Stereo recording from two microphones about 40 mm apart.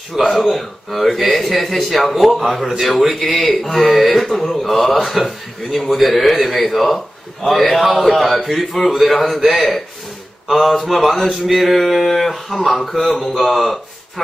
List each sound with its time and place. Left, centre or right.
0.3 s speech: centre